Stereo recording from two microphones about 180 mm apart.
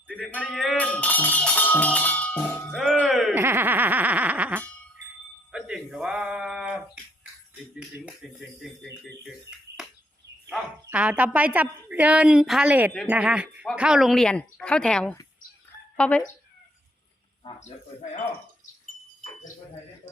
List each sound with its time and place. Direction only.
0.1 s music: 5° left (ahead or behind)
3.3 s a woman's voice: 10° right (ahead or behind)
5.5 s alarm: 5° right (ahead or behind)
7.8 s speech: 5° right (ahead or behind)
10.8 s a woman's voice: 5° right (ahead or behind)
17.6 s speech: 40° left (ahead or behind)